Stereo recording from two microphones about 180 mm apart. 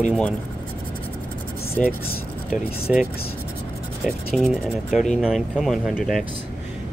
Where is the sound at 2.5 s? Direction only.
5° right (ahead or behind).